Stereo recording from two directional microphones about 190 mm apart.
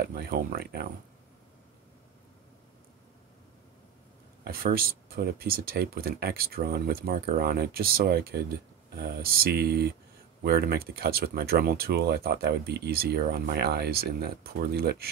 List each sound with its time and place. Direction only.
0.3 s speech: 50° right (ahead or behind)
4.5 s speech: 50° right (ahead or behind)